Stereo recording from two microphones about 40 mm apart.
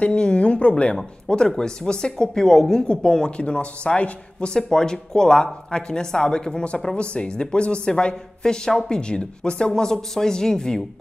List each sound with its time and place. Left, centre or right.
0.1 s a sound: left
1.3 s speech: centre
4.6 s speech: centre